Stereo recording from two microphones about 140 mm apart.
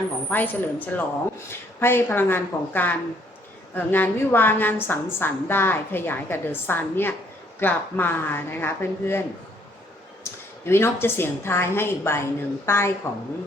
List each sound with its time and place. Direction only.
0.3 s a woman's voice: 10° left (ahead or behind)
10.3 s a sound: 20° left (ahead or behind)
10.7 s a woman's voice: 15° left (ahead or behind)